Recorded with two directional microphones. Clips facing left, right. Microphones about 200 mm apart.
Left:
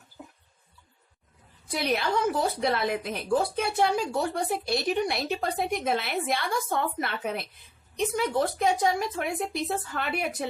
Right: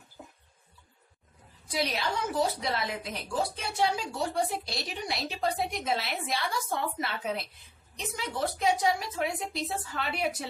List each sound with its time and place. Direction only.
1.7 s a woman's voice: 55° left (ahead or behind)